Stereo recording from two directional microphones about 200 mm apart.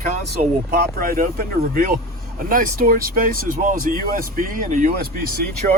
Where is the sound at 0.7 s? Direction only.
45° right (ahead or behind).